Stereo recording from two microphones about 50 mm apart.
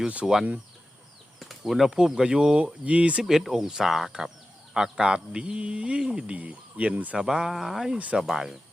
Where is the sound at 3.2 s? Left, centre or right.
Centre.